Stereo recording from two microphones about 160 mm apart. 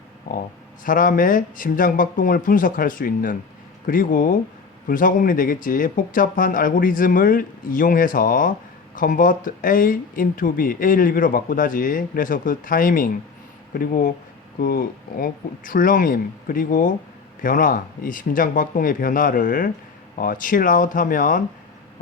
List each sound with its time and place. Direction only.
0.9 s speech: 60° left (ahead or behind)